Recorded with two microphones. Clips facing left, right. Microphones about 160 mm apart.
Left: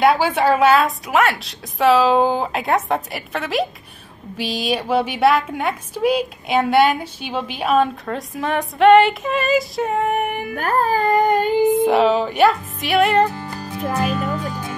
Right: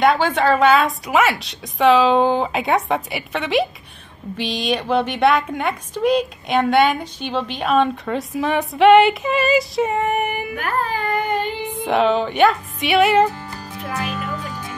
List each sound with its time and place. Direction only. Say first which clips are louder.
0.0 s a woman's voice: left 1 dB; 10° left (ahead or behind)
10.5 s speech: left 4 dB; 40° left (ahead or behind)
11.7 s a woman's voice: left 3 dB; centre (ahead or behind)